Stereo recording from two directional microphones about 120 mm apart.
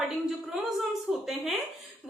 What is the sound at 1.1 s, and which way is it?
Speech, 5° right (ahead or behind).